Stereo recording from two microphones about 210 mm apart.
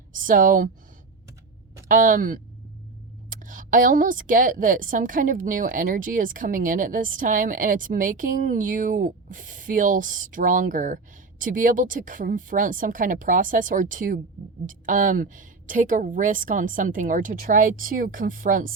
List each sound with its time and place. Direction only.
0.2 s a woman's voice: 40° right (ahead or behind)
1.9 s a woman's voice: 40° right (ahead or behind)